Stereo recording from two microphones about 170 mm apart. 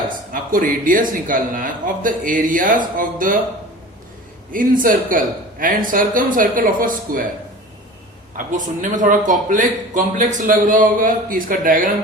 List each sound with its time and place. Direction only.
0.5 s a man's voice: 55° right (ahead or behind)
4.5 s a man's voice: 55° right (ahead or behind)
8.5 s a man's voice: 50° right (ahead or behind)